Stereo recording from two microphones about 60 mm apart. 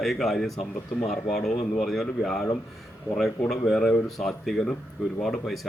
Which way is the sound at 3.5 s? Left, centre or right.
Centre.